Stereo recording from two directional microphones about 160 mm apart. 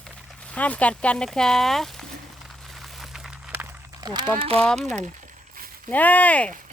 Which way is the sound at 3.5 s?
20° right (ahead or behind).